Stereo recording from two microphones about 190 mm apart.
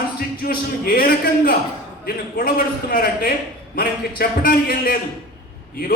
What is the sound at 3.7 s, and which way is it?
A man's voice, 55° left (ahead or behind).